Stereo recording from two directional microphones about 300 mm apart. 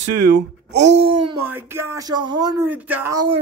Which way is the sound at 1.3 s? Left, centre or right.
Centre.